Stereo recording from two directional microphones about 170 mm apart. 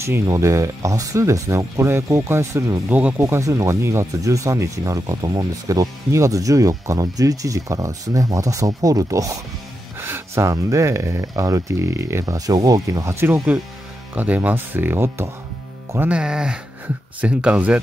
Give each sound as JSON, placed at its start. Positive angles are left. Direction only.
{"t": 0.0, "sound": "speech", "side_deg": -15}